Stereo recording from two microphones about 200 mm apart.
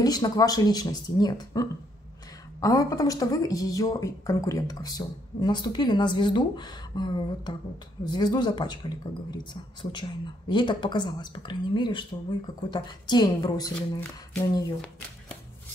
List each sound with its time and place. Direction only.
0.0 s a woman's voice: 20° left (ahead or behind)